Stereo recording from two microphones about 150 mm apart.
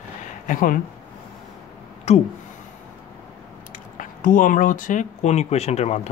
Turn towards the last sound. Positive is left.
turn(degrees=45)  # may be behind; listen again after turning